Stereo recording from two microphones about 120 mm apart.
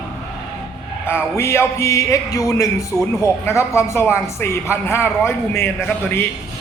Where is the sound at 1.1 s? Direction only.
20° left (ahead or behind).